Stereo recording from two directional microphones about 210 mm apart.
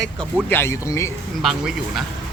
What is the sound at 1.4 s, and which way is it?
Speech, centre (ahead or behind).